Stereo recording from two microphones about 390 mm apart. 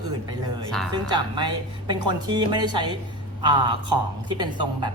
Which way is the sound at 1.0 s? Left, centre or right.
Centre.